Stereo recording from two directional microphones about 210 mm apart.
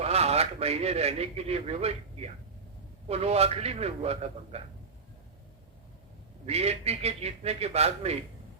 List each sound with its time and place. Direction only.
0.0 s a man's voice: 30° right (ahead or behind)
6.4 s a man's voice: 30° right (ahead or behind)